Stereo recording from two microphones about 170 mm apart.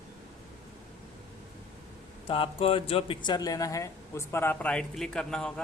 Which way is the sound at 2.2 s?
30° left (ahead or behind).